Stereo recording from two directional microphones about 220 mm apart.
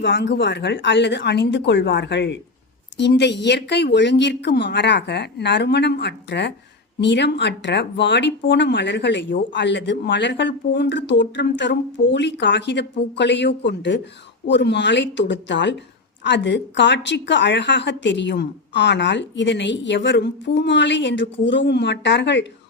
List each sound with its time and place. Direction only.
0.0 s speech: 50° left (ahead or behind)